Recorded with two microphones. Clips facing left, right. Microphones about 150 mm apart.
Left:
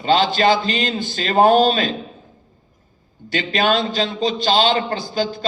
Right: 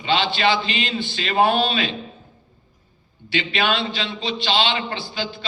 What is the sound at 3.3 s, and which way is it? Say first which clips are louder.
A man's voice: left 4 dB; 40° left (ahead or behind).